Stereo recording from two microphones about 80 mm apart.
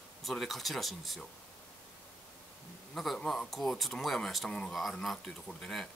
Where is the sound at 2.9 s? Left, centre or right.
Centre.